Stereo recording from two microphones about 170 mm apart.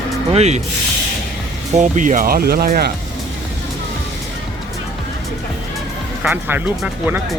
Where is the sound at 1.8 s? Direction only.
50° right (ahead or behind).